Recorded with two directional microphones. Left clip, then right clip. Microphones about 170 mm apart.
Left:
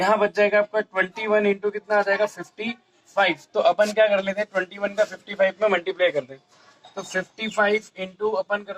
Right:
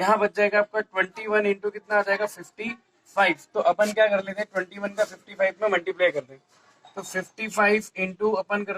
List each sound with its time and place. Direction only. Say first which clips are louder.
0.0 s a man's voice: left 2 dB; 20° left (ahead or behind)